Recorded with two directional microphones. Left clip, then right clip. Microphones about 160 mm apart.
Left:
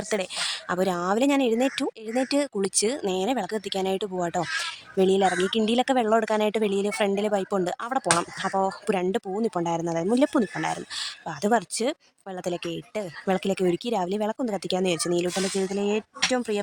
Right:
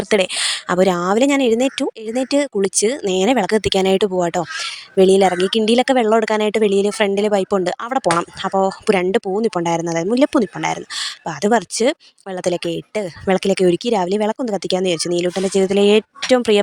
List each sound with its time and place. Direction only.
0.1 s speech: 35° right (ahead or behind)